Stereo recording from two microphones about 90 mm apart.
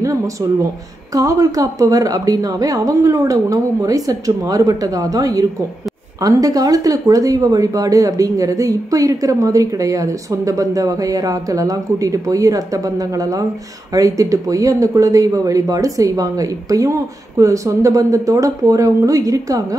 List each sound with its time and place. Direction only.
0.0 s speech: 35° right (ahead or behind)